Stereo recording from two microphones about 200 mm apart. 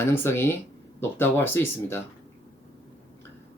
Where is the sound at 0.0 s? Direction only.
10° left (ahead or behind).